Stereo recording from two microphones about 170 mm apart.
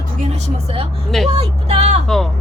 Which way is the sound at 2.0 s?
Centre (ahead or behind).